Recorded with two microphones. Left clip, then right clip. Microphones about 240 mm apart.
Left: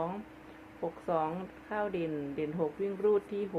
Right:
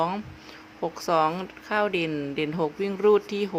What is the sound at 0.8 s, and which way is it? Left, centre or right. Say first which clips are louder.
Speech: right 9 dB; right.